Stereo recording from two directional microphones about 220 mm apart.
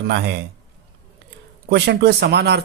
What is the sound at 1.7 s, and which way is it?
Speech, 45° right (ahead or behind).